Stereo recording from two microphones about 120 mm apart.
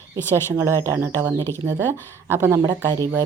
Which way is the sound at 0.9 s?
20° right (ahead or behind).